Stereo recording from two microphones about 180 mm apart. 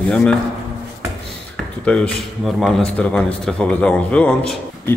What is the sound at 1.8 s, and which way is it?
A man's voice, 5° left (ahead or behind).